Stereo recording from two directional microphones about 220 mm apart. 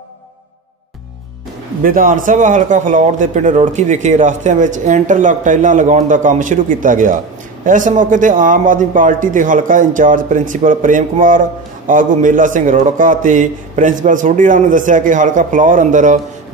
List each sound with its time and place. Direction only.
1.8 s a man's voice: 40° right (ahead or behind)